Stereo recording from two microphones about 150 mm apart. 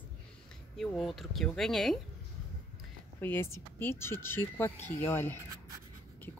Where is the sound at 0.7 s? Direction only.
Centre (ahead or behind).